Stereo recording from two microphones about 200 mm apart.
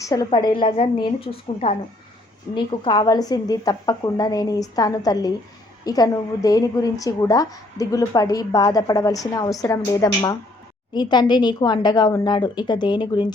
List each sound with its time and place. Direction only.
0.0 s a woman's voice: 20° left (ahead or behind)